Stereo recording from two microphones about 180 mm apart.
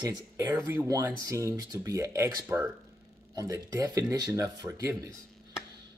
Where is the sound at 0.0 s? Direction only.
20° right (ahead or behind).